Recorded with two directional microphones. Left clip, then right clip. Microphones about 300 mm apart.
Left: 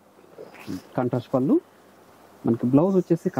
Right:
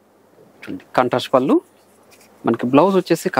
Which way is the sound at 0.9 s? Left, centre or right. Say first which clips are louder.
Right 10 dB; centre.